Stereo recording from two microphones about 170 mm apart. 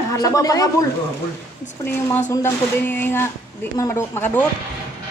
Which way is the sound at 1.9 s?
10° left (ahead or behind).